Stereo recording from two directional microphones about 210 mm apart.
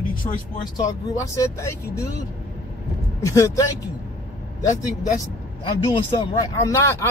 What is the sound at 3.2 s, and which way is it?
Speech, 15° left (ahead or behind).